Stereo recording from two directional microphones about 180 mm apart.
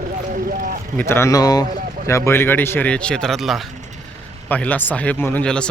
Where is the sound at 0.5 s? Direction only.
55° right (ahead or behind).